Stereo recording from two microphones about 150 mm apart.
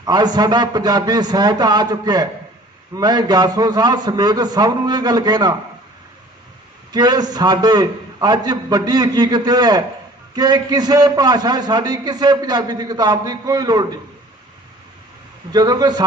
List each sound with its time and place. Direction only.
0.0 s a man's voice: 30° right (ahead or behind)
6.9 s a man's voice: 25° right (ahead or behind)
15.5 s a man's voice: 25° right (ahead or behind)